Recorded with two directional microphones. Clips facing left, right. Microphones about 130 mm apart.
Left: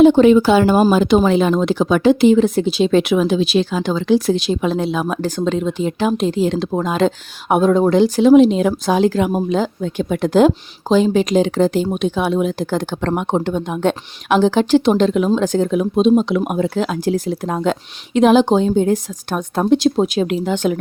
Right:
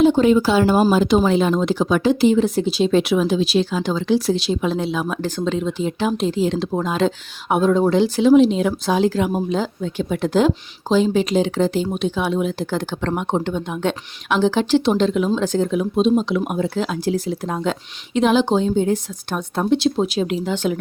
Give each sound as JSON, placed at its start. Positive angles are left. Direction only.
{"t": 0.0, "sound": "speech", "side_deg": 75}